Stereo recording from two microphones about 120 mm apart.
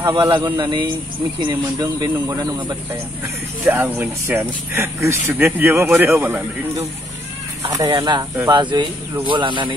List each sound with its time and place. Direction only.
0.1 s speech: 40° right (ahead or behind)
3.6 s speech: 15° right (ahead or behind)
7.9 s a man's voice: 35° right (ahead or behind)